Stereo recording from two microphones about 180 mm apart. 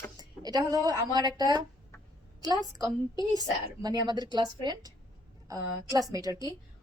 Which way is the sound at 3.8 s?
20° right (ahead or behind).